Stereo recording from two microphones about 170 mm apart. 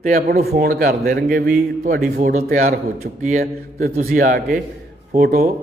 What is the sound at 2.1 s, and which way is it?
Speech, 50° right (ahead or behind).